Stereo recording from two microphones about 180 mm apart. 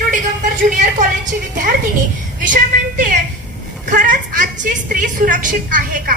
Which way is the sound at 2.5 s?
50° right (ahead or behind).